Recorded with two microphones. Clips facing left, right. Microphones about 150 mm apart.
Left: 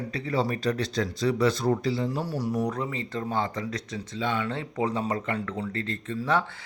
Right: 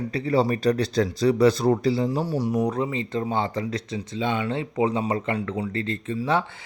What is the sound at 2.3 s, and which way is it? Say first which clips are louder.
Speech: right 4 dB; 20° right (ahead or behind).